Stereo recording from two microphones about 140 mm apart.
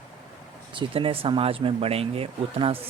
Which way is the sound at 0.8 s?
40° right (ahead or behind).